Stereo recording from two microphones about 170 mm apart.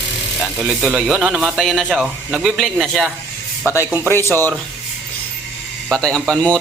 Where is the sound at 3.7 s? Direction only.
15° left (ahead or behind).